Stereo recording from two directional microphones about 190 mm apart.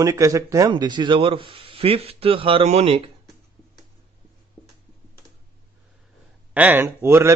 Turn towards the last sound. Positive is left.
turn(degrees=-15)  # may be behind; listen again after turning